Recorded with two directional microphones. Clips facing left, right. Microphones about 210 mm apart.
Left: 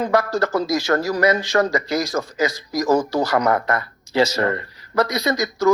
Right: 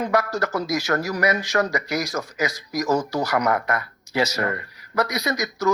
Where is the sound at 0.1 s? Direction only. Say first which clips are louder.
Left 4 dB; 30° left (ahead or behind).